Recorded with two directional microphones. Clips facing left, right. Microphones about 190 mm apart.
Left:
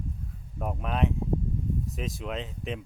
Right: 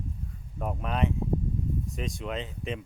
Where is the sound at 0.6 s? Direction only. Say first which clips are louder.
Even; centre (ahead or behind).